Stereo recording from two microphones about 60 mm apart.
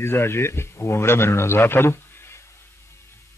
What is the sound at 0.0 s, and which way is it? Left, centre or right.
A man's voice, left.